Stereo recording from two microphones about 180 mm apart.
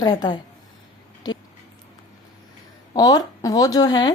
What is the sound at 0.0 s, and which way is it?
Speech, 20° left (ahead or behind).